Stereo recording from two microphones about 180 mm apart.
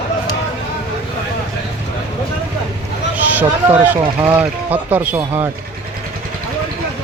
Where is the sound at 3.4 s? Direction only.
10° right (ahead or behind).